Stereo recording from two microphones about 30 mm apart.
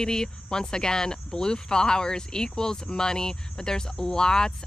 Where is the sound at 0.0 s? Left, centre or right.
Left.